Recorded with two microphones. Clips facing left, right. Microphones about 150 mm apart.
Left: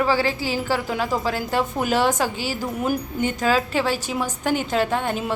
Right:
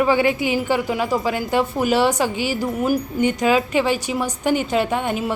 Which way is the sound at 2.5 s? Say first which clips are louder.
Right 4 dB; 10° right (ahead or behind).